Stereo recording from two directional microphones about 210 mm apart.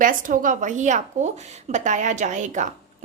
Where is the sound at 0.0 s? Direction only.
40° right (ahead or behind).